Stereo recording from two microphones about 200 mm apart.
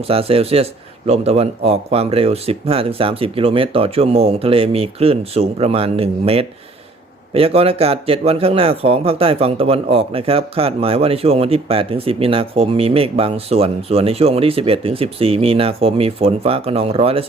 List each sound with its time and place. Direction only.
0.1 s speech: 30° right (ahead or behind)